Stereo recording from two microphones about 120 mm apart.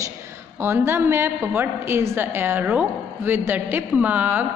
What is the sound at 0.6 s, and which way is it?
A woman's voice, 20° right (ahead or behind).